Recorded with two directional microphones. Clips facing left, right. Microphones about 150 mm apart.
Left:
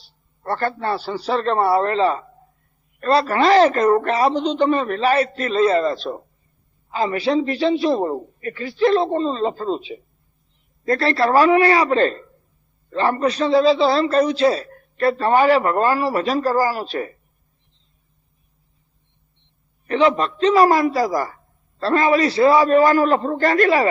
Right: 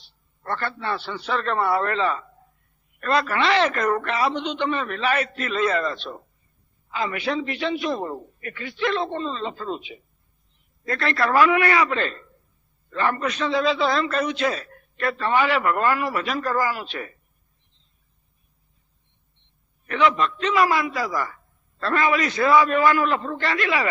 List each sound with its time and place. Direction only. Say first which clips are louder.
0.0 s a man's voice: left 6 dB; 35° left (ahead or behind)
19.9 s a man's voice: left 4 dB; 35° left (ahead or behind)